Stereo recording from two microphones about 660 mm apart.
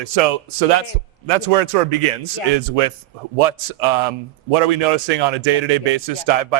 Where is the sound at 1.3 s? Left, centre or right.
Right.